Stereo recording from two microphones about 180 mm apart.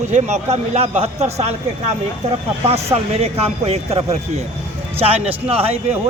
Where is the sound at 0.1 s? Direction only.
40° right (ahead or behind).